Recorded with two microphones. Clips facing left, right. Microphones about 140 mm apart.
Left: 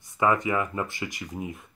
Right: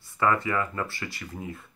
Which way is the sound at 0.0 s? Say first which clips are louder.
Left 1 dB; 15° left (ahead or behind).